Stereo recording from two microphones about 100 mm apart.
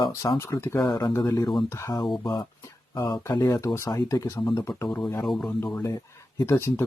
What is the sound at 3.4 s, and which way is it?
Speech, 30° left (ahead or behind).